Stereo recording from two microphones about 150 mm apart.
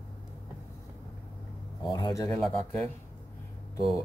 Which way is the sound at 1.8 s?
25° left (ahead or behind).